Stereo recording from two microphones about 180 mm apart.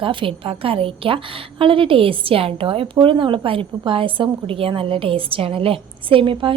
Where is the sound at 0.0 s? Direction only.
30° right (ahead or behind).